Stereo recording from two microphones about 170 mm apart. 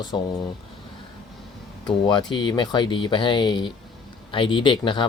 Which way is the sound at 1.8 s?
25° left (ahead or behind).